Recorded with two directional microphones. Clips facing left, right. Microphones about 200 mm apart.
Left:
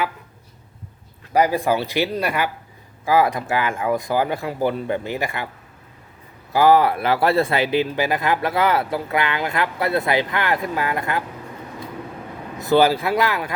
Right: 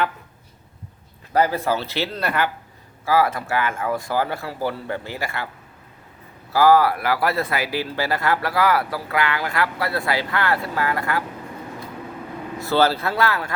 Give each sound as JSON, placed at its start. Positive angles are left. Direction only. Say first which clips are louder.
{"t": 1.3, "sound": "speech", "louder": "left 2 dB", "side_deg": 15}
{"t": 6.5, "sound": "speech", "louder": "left 1 dB", "side_deg": 20}
{"t": 12.5, "sound": "speech", "louder": "left 3 dB", "side_deg": 15}